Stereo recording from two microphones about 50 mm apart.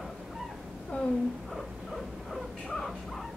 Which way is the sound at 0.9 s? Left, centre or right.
Left.